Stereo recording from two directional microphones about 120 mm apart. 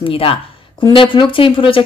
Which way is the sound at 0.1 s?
50° left (ahead or behind).